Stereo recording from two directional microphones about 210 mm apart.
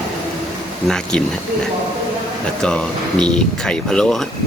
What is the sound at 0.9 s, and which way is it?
Speech, 5° left (ahead or behind).